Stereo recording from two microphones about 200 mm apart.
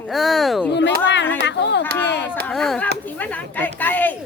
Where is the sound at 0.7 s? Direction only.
60° left (ahead or behind).